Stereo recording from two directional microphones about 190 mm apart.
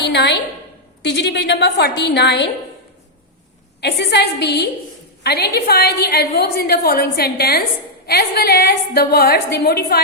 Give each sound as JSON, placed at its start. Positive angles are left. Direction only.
{"t": 0.0, "sound": "a woman's voice", "side_deg": 65}
{"t": 3.8, "sound": "a woman's voice", "side_deg": 60}